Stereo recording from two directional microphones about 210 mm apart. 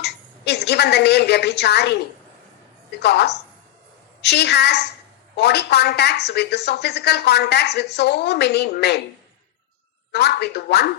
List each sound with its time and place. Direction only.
0.0 s a sound: 50° left (ahead or behind)
3.0 s a woman's voice: 50° left (ahead or behind)
10.1 s a woman's voice: 50° left (ahead or behind)